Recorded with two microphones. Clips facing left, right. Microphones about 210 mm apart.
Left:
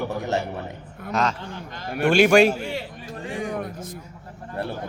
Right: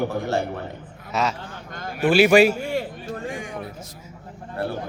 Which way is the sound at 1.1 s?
Centre (ahead or behind).